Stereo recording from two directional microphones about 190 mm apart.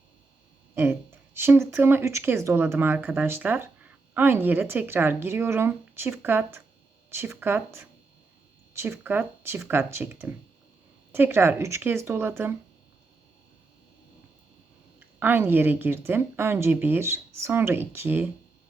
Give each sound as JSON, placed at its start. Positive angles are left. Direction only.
{"t": 0.8, "sound": "speech", "side_deg": -10}
{"t": 14.9, "sound": "speech", "side_deg": -10}